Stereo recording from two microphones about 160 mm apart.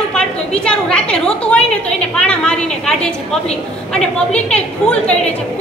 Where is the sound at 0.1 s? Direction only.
5° left (ahead or behind).